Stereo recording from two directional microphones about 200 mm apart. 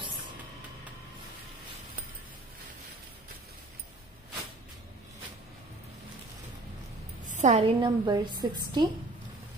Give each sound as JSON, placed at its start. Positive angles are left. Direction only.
{"t": 7.2, "sound": "a woman's voice", "side_deg": -35}